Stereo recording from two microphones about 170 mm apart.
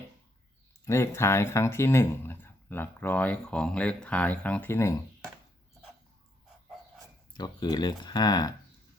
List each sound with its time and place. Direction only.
0.9 s speech: 15° left (ahead or behind)
7.3 s speech: 25° left (ahead or behind)